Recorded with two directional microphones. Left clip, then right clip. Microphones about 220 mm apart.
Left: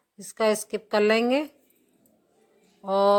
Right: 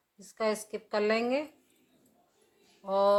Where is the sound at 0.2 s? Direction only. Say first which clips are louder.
Left 7 dB; 45° left (ahead or behind).